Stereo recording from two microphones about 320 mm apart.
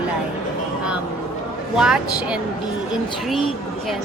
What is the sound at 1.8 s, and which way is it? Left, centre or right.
Speech, centre.